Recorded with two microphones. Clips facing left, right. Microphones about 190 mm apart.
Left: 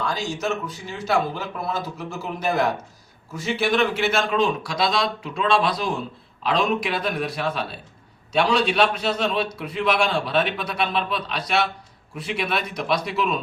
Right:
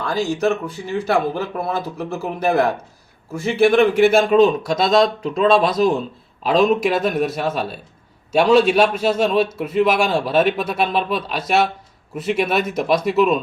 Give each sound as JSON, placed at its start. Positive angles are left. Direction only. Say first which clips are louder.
{"t": 0.0, "sound": "a man's voice", "louder": "right 7 dB", "side_deg": -60}
{"t": 11.1, "sound": "speech", "louder": "right 5 dB", "side_deg": -5}
{"t": 12.1, "sound": "a man's voice", "louder": "right 7 dB", "side_deg": -45}